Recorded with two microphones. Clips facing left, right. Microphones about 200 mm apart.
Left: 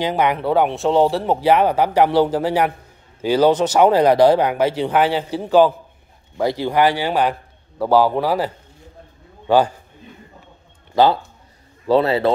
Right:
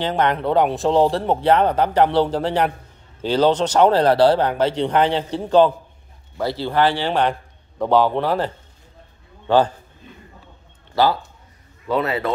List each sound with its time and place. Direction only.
0.0 s speech: 10° left (ahead or behind)
11.9 s speech: 30° left (ahead or behind)